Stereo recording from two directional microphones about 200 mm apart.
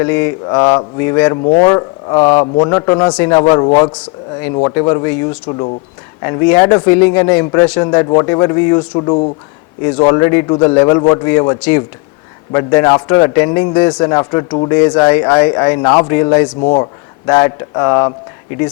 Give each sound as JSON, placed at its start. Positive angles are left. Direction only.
{"t": 0.0, "sound": "speech", "side_deg": 10}
{"t": 6.2, "sound": "speech", "side_deg": 15}
{"t": 9.0, "sound": "speech", "side_deg": 30}
{"t": 9.8, "sound": "speech", "side_deg": 15}
{"t": 16.6, "sound": "speech", "side_deg": 25}